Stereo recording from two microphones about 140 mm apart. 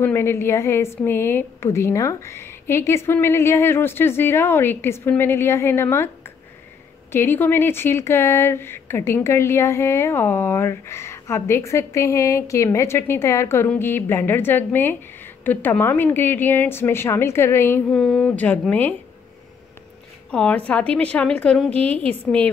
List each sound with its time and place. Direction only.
0.0 s speech: 15° left (ahead or behind)
7.1 s speech: 15° left (ahead or behind)
20.2 s speech: 10° left (ahead or behind)